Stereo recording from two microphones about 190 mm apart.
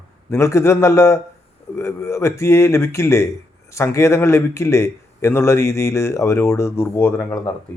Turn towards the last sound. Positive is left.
turn(degrees=10)  # may be behind; listen again after turning